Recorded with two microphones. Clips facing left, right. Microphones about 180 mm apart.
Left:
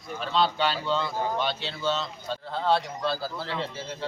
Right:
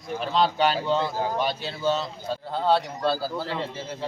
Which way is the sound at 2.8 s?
45° right (ahead or behind).